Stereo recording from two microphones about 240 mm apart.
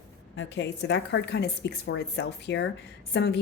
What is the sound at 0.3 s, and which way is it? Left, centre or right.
A woman's voice, left.